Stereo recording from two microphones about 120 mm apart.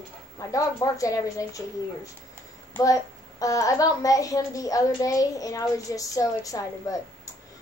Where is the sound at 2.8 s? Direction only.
30° left (ahead or behind).